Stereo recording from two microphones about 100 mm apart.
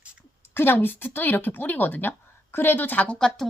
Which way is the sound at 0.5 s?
20° left (ahead or behind).